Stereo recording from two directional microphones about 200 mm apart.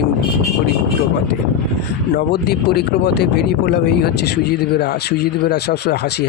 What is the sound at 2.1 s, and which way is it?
Speech, 55° left (ahead or behind).